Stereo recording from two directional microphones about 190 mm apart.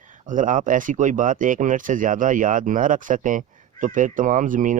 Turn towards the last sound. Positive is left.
turn(degrees=-45)  # may be behind; listen again after turning